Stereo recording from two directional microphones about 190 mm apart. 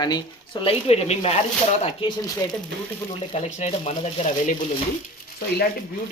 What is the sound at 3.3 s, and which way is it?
Speech, 35° left (ahead or behind).